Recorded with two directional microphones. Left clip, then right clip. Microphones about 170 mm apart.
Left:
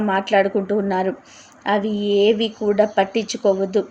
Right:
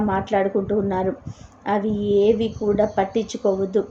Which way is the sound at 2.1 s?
15° left (ahead or behind).